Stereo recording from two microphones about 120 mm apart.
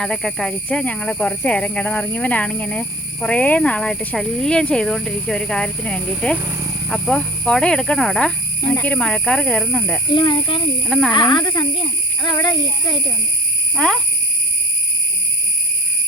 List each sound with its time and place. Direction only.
0.0 s speech: 5° left (ahead or behind)
10.2 s speech: 40° left (ahead or behind)
10.8 s speech: centre (ahead or behind)
11.1 s speech: 40° left (ahead or behind)
13.7 s speech: 5° left (ahead or behind)